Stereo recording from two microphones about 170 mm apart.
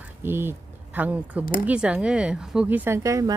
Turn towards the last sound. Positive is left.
turn(degrees=-20)  # may be behind; listen again after turning